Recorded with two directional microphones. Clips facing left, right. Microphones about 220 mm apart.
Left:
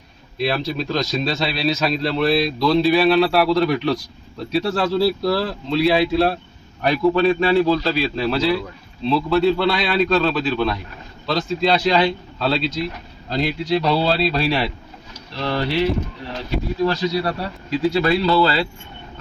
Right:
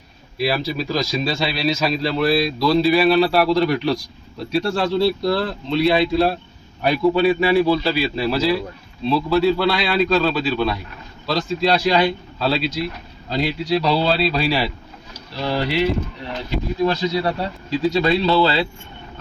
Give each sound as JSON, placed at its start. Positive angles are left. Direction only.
{"t": 0.3, "sound": "a man's voice", "side_deg": -5}
{"t": 15.4, "sound": "a man's voice", "side_deg": -10}